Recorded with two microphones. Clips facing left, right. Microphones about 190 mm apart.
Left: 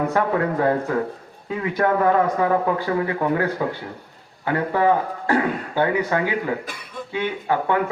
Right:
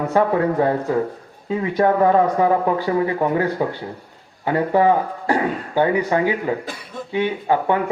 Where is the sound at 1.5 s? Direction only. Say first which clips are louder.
Right 3 dB; 25° right (ahead or behind).